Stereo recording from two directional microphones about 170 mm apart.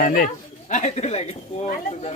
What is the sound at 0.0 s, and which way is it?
Speech, 60° left (ahead or behind).